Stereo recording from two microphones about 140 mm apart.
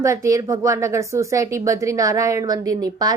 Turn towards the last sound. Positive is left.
turn(degrees=-25)  # may be behind; listen again after turning